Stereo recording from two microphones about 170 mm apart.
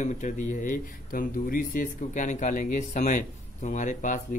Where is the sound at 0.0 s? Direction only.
45° left (ahead or behind).